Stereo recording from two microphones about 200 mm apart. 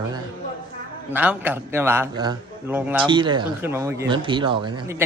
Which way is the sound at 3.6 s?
15° right (ahead or behind).